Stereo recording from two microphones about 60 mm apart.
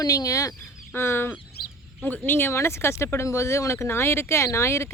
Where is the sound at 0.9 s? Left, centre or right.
Left.